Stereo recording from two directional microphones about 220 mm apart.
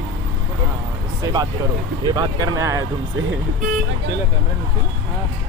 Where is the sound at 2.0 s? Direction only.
20° right (ahead or behind).